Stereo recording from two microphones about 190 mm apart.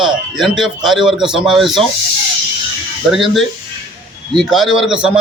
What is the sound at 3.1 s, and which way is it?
A man's voice, centre (ahead or behind).